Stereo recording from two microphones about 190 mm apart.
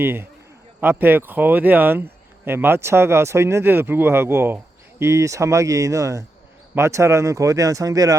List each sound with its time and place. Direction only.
0.0 s speech: 10° right (ahead or behind)